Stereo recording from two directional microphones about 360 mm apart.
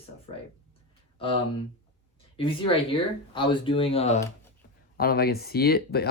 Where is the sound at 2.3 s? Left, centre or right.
Centre.